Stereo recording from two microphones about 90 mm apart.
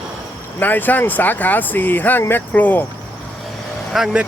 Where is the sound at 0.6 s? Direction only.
20° left (ahead or behind).